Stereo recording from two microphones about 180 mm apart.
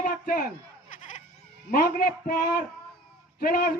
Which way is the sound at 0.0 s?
55° left (ahead or behind).